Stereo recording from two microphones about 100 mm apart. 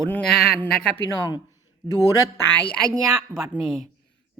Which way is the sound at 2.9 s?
35° right (ahead or behind).